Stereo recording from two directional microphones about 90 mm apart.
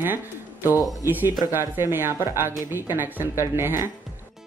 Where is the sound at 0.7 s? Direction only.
40° left (ahead or behind).